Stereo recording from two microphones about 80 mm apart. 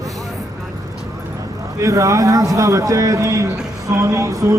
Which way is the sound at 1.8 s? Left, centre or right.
Right.